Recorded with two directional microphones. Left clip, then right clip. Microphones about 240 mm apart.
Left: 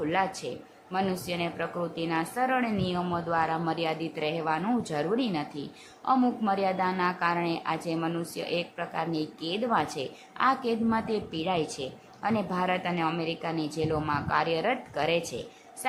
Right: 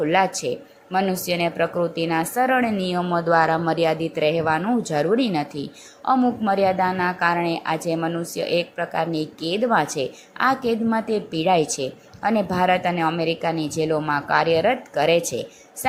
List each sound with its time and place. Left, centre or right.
0.0 s a woman's voice: centre